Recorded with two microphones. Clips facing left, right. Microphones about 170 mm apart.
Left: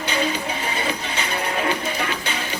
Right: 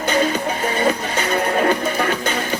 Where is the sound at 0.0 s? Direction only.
50° right (ahead or behind).